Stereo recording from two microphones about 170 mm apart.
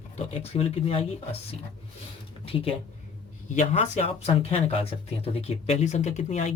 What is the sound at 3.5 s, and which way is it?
Speech, 45° left (ahead or behind).